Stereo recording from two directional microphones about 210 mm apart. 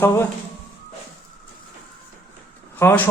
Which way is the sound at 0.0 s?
10° left (ahead or behind).